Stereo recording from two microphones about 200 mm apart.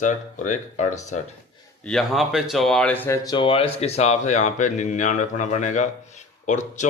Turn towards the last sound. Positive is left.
turn(degrees=35)  # may be behind; listen again after turning